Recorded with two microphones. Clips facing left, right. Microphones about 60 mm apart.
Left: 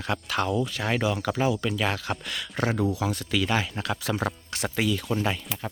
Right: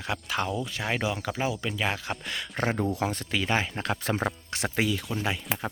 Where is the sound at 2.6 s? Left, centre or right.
Right.